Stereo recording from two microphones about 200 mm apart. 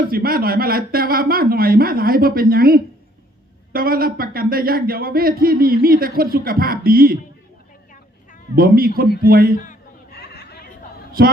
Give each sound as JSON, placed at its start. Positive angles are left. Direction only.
{"t": 0.1, "sound": "speech", "side_deg": -50}
{"t": 8.5, "sound": "speech", "side_deg": -50}
{"t": 9.6, "sound": "chatter", "side_deg": 45}
{"t": 11.2, "sound": "speech", "side_deg": -45}